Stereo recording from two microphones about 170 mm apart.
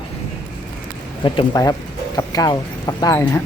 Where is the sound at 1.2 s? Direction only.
25° left (ahead or behind).